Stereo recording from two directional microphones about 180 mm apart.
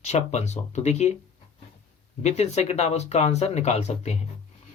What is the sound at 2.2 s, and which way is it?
Speech, 40° left (ahead or behind).